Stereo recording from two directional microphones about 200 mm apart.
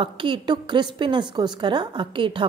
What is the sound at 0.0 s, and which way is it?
A woman's voice, 25° right (ahead or behind).